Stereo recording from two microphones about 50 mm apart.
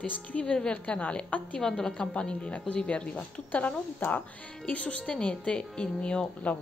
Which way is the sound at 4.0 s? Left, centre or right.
Left.